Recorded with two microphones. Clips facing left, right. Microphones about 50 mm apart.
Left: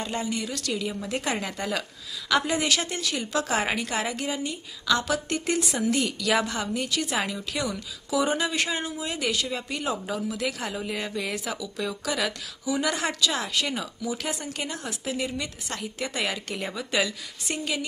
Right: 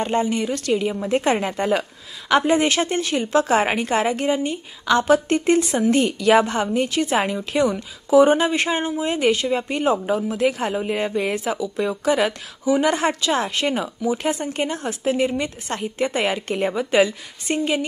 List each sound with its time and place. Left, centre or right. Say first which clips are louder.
0.0 s a woman's voice: right 9 dB; right